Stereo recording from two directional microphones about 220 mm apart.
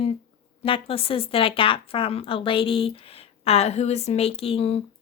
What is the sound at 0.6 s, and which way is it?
Speech, 25° left (ahead or behind).